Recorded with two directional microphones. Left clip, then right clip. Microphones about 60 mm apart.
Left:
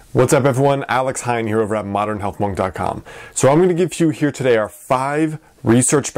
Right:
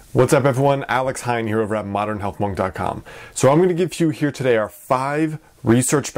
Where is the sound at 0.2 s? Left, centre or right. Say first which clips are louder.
Left 2 dB; left.